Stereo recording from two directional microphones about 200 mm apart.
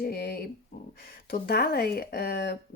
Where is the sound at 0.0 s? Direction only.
50° left (ahead or behind).